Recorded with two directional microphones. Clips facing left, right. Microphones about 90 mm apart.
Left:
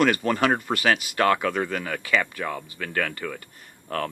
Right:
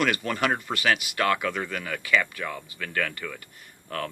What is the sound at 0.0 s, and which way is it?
Speech, 40° left (ahead or behind).